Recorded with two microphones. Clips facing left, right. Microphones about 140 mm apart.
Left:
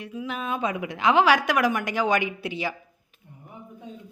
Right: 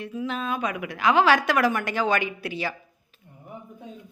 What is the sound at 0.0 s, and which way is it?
A woman's voice, 10° left (ahead or behind).